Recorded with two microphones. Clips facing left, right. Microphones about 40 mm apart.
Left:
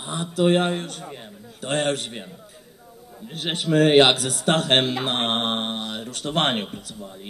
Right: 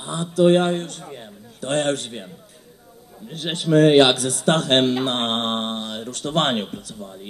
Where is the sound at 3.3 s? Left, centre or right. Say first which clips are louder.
Right 3 dB; left.